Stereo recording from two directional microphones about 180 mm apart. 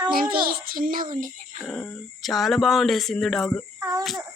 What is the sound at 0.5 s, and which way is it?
Child singing, 55° right (ahead or behind).